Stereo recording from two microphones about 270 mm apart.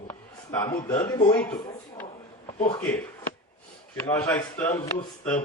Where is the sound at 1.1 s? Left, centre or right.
Centre.